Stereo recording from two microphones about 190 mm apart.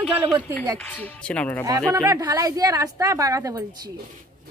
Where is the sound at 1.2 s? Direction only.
5° left (ahead or behind).